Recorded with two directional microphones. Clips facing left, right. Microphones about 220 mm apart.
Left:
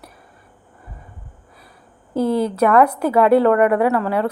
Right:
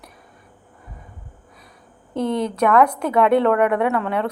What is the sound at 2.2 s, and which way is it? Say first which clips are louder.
A woman's voice: left 3 dB; 5° left (ahead or behind).